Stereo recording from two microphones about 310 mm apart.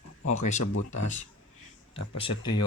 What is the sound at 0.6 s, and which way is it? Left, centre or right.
Speech, left.